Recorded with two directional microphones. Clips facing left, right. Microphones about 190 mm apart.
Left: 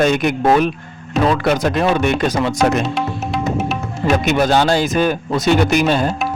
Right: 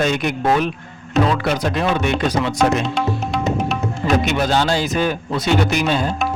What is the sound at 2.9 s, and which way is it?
Music, 5° left (ahead or behind).